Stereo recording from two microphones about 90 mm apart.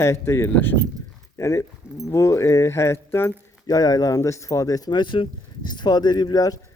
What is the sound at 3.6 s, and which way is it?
Speech, 45° left (ahead or behind).